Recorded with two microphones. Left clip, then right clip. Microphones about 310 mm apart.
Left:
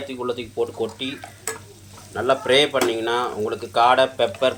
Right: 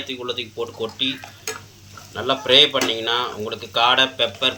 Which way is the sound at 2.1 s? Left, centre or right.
Centre.